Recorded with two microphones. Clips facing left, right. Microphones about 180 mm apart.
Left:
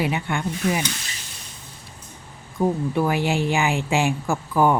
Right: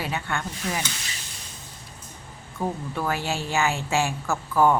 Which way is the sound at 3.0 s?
15° left (ahead or behind).